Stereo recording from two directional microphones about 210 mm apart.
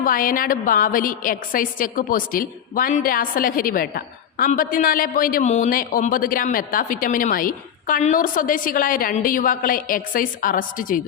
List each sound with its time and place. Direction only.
0.0 s a woman's voice: 40° left (ahead or behind)